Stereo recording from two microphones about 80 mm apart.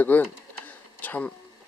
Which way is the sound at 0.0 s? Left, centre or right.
Left.